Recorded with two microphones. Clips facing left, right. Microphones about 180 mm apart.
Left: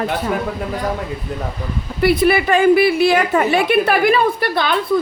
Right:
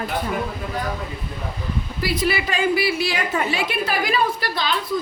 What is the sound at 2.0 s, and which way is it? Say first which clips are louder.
A woman's voice: left 9 dB; 60° left (ahead or behind).